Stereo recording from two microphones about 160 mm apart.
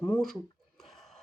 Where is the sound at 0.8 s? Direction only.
Centre (ahead or behind).